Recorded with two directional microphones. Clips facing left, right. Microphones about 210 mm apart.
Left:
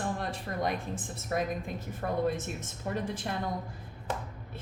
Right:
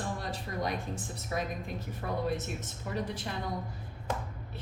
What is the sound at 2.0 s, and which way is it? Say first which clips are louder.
Speech: left 3 dB; 50° left (ahead or behind).